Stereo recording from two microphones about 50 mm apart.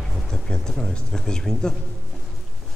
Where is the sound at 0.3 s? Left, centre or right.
Centre.